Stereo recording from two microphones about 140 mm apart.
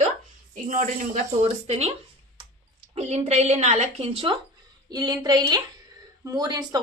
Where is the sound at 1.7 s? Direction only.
50° right (ahead or behind).